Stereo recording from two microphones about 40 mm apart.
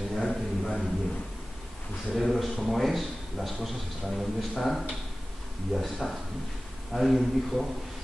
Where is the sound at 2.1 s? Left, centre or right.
Centre.